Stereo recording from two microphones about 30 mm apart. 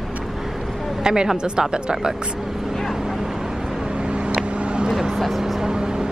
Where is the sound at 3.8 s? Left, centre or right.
Right.